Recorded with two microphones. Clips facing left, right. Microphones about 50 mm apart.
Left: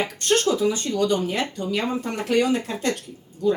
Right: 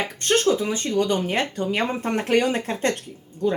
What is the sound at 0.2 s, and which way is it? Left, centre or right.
Speech, right.